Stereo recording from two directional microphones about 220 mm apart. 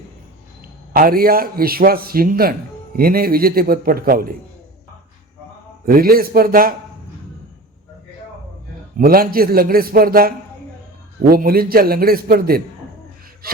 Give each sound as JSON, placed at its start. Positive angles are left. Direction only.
{"t": 0.6, "sound": "a man's voice", "side_deg": -40}
{"t": 5.8, "sound": "a man's voice", "side_deg": -40}
{"t": 9.0, "sound": "a man's voice", "side_deg": -40}